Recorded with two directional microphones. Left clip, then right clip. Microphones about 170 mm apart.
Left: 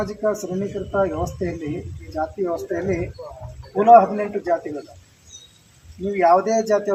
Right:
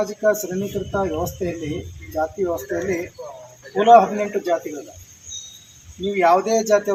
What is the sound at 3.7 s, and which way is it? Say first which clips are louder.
Speech: even; 15° right (ahead or behind).